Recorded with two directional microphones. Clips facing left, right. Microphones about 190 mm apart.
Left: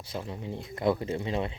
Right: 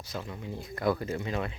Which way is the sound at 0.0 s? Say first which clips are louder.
Left 2 dB; 30° left (ahead or behind).